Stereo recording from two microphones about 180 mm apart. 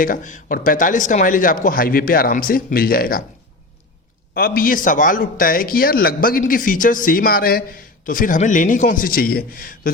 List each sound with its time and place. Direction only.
0.0 s a man's voice: 50° left (ahead or behind)
4.4 s a man's voice: 55° left (ahead or behind)